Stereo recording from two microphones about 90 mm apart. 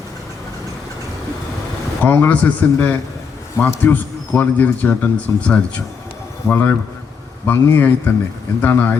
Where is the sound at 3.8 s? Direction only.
20° left (ahead or behind).